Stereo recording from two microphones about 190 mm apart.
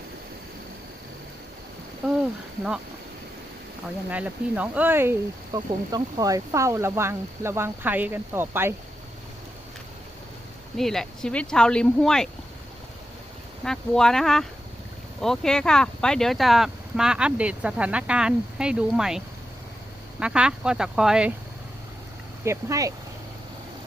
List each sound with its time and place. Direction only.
4.1 s speech: 5° right (ahead or behind)
10.8 s speech: centre (ahead or behind)
13.7 s speech: 5° left (ahead or behind)
22.4 s speech: 15° right (ahead or behind)